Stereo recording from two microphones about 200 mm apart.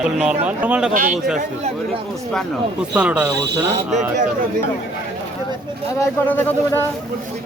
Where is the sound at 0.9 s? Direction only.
45° right (ahead or behind).